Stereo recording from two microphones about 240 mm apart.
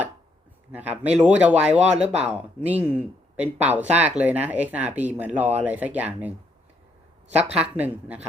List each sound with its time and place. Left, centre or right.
0.7 s speech: centre
1.8 s speech: right
2.2 s speech: centre
7.5 s speech: centre